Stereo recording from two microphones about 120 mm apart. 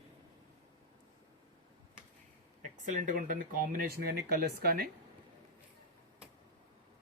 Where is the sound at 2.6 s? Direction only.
90° right.